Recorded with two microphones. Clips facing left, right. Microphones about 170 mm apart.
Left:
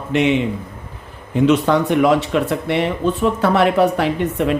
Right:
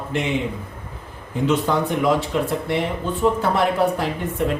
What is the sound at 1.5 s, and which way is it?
Speech, 75° left (ahead or behind).